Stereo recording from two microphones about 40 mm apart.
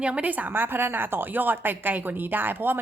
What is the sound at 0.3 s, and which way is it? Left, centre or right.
Speech, right.